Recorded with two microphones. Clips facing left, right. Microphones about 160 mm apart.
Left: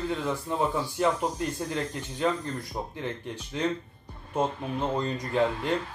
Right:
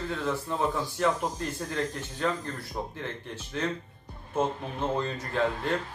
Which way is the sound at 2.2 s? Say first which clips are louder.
Left 3 dB; 15° left (ahead or behind).